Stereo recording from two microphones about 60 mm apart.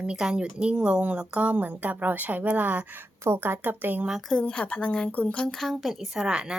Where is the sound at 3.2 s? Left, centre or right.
Right.